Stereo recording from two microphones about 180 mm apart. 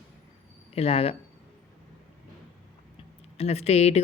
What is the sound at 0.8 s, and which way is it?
Speech, 35° left (ahead or behind).